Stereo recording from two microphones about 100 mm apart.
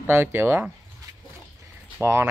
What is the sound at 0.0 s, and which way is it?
Speech, 25° right (ahead or behind).